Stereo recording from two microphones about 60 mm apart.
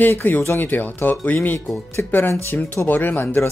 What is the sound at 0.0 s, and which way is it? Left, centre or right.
Speech, left.